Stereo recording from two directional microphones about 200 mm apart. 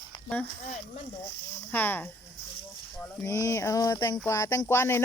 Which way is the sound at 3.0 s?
15° left (ahead or behind).